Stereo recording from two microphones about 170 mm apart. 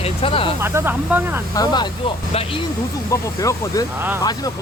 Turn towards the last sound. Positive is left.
turn(degrees=20)  # may be behind; listen again after turning